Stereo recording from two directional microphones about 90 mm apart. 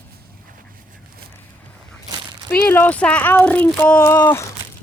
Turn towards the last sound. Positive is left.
turn(degrees=30)  # may be behind; listen again after turning